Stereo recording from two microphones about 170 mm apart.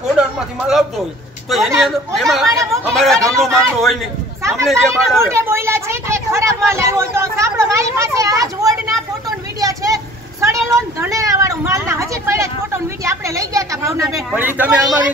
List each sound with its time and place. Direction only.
0.2 s a sound: 5° right (ahead or behind)
0.7 s speech: centre (ahead or behind)
2.4 s speech: 20° right (ahead or behind)
2.9 s speech: 5° left (ahead or behind)
4.4 s a sound: 15° right (ahead or behind)
4.6 s speech: centre (ahead or behind)
5.3 s speech: 15° right (ahead or behind)
9.6 s vehicle: 20° right (ahead or behind)
10.4 s speech: 20° right (ahead or behind)